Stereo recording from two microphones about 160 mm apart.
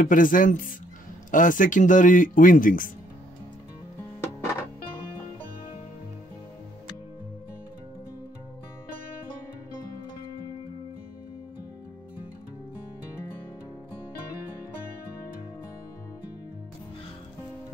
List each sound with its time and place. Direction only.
0.0 s speech: 55° left (ahead or behind)
4.2 s music: 15° left (ahead or behind)